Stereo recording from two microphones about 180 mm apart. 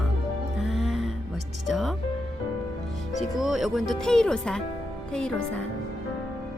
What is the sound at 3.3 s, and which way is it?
Speech, centre (ahead or behind).